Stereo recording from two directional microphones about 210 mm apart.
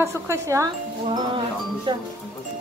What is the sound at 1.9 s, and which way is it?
Speech, 25° right (ahead or behind).